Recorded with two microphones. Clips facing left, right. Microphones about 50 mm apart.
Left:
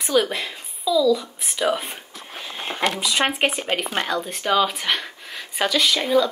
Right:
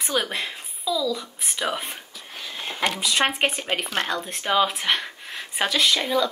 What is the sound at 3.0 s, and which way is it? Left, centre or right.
Speech, centre.